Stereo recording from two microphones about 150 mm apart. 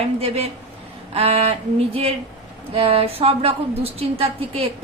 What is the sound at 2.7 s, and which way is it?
A woman's voice, 40° right (ahead or behind).